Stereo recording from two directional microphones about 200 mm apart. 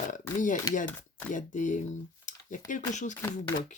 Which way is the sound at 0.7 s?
20° left (ahead or behind).